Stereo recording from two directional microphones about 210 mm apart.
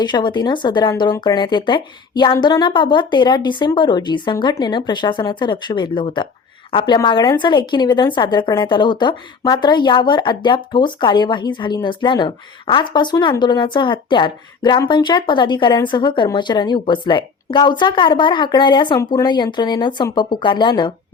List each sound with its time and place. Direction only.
0.0 s a woman's voice: 20° left (ahead or behind)